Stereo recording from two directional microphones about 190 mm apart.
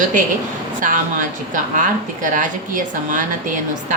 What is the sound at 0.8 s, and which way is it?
A woman's voice, 45° right (ahead or behind).